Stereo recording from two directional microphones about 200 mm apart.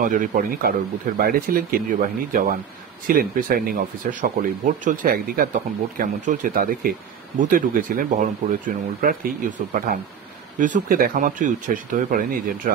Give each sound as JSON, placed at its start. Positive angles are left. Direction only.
{"t": 0.0, "sound": "speech", "side_deg": -40}
{"t": 10.6, "sound": "speech", "side_deg": -45}